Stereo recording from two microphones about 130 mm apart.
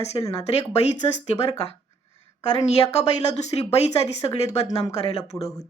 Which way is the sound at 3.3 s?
55° left (ahead or behind).